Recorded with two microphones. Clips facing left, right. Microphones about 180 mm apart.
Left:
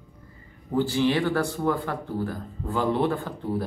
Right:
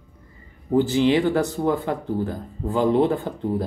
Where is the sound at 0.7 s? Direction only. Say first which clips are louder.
Right 5 dB; 20° right (ahead or behind).